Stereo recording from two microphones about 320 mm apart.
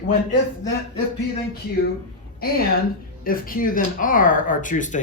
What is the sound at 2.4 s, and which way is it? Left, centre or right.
Speech, left.